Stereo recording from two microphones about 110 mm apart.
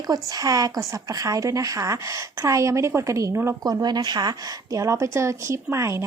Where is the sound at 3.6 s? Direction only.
40° right (ahead or behind).